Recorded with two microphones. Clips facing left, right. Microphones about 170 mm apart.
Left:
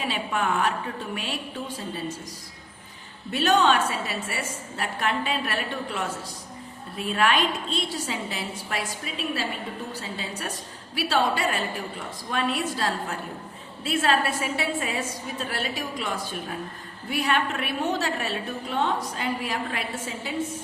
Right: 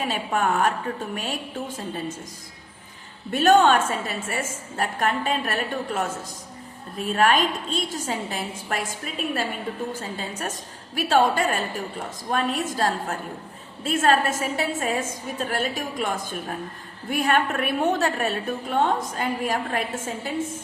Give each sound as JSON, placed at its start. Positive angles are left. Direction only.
{"t": 0.0, "sound": "a woman's voice", "side_deg": -45}
{"t": 3.3, "sound": "a woman's voice", "side_deg": -50}